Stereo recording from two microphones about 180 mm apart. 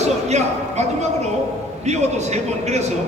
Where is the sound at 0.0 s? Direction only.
40° right (ahead or behind).